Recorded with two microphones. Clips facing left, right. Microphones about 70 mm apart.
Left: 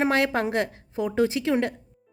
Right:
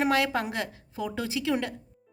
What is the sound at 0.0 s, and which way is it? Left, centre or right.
A woman's voice, left.